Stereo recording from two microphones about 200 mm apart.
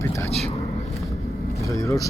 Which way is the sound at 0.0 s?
15° left (ahead or behind).